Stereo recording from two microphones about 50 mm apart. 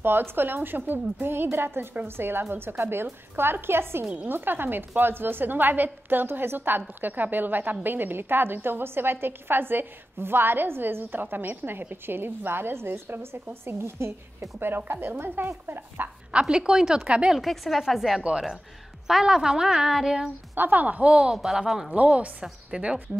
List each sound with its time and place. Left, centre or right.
0.0 s a woman's voice: right
14.9 s a woman's voice: right
16.3 s a woman's voice: centre
17.4 s speech: centre
20.5 s speech: right; by 21.9 s centre
21.9 s a woman's voice: right
22.4 s speech: centre